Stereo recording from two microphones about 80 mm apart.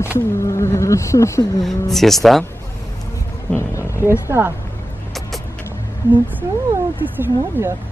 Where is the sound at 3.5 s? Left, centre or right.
Left.